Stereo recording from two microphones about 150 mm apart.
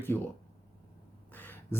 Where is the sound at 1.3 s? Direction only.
15° left (ahead or behind).